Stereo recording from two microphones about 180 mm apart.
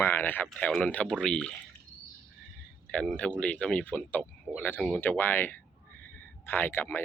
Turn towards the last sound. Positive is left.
turn(degrees=10)  # may be behind; listen again after turning